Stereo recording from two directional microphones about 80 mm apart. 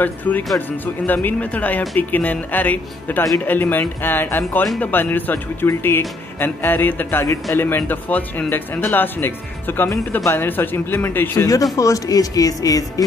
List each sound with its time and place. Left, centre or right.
0.0 s speech: left
11.4 s speech: left